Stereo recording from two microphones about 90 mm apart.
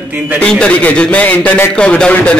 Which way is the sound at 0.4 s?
10° left (ahead or behind).